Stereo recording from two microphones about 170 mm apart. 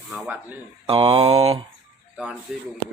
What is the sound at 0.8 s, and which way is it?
Mantra, 30° right (ahead or behind).